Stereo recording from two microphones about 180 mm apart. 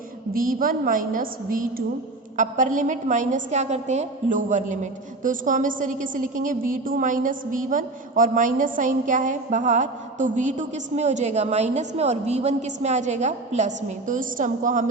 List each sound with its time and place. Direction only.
0.3 s a woman's voice: 50° right (ahead or behind)